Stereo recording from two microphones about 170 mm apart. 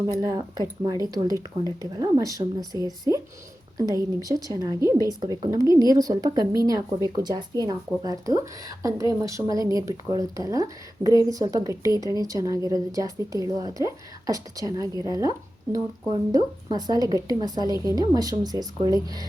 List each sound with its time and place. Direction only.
0.2 s a woman's voice: 25° right (ahead or behind)
14.9 s speech: 25° left (ahead or behind)
16.3 s a woman's voice: 20° right (ahead or behind)